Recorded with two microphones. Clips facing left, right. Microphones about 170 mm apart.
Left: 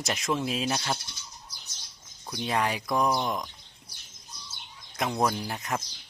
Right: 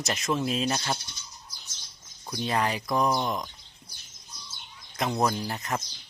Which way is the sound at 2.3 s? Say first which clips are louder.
Right 1 dB; centre (ahead or behind).